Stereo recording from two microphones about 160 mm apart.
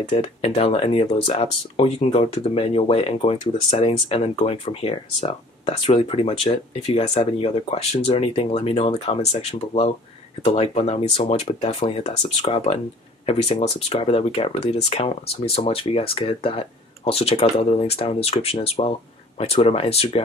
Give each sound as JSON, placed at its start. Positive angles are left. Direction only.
{"t": 0.1, "sound": "speech", "side_deg": 40}